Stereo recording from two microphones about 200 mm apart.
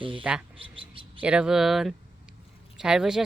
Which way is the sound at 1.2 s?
5° right (ahead or behind).